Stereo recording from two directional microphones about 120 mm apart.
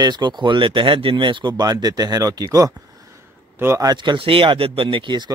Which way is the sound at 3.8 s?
40° right (ahead or behind).